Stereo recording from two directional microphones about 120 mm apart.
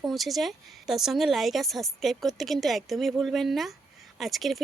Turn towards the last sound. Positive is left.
turn(degrees=0)  # may be behind; listen again after turning